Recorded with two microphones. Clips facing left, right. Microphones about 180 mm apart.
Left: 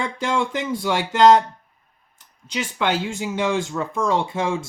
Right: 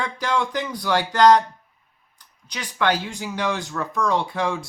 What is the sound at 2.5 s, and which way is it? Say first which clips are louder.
Speech: even; 25° left (ahead or behind).